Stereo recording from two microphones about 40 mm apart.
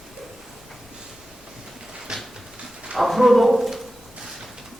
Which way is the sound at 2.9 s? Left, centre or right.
Centre.